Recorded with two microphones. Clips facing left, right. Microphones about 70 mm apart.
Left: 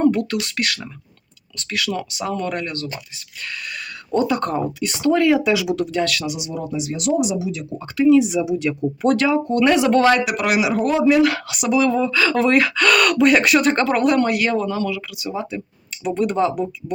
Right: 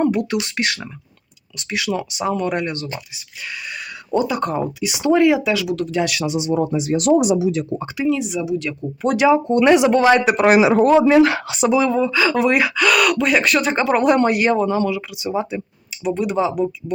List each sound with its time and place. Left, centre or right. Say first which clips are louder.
0.0 s speech: left 1 dB; centre
4.1 s speech: even; centre
5.5 s speech: left 1 dB; centre
6.1 s speech: right 5 dB; right
8.0 s speech: left 7 dB; centre
8.4 s speech: left 2 dB; centre
9.1 s speech: right 3 dB; centre
10.2 s speech: right 6 dB; right
11.9 s speech: right 1 dB; centre
16.0 s speech: even; centre